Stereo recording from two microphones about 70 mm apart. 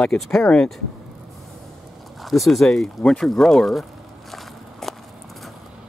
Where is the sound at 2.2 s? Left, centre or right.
Centre.